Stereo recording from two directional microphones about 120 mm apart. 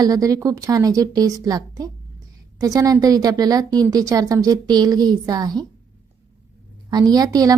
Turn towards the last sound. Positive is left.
turn(degrees=-30)  # may be behind; listen again after turning